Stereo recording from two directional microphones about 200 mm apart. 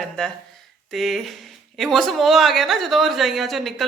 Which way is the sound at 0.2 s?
Centre (ahead or behind).